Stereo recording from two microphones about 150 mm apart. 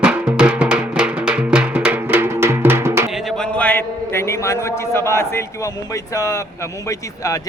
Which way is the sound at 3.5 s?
10° left (ahead or behind).